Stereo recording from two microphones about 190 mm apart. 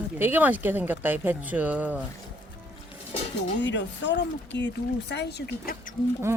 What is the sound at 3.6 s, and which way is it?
Speech, 70° left (ahead or behind).